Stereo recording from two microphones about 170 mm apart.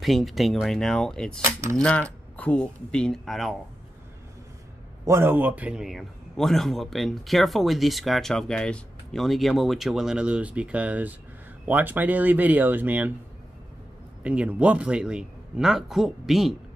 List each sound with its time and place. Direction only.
0.0 s a man's voice: centre (ahead or behind)
1.4 s coin: 15° right (ahead or behind)
1.8 s speech: 5° left (ahead or behind)
5.0 s a man's voice: 15° right (ahead or behind)
14.2 s a man's voice: 5° right (ahead or behind)